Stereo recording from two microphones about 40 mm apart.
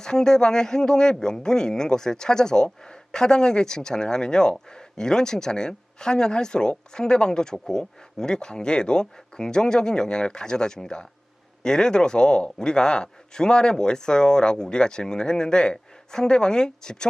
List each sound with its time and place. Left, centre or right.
0.0 s speech: centre